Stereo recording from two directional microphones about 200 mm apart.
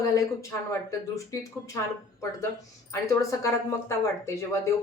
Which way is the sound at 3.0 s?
15° left (ahead or behind).